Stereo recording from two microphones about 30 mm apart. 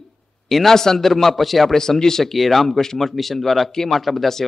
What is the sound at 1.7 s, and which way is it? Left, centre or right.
Speech, centre.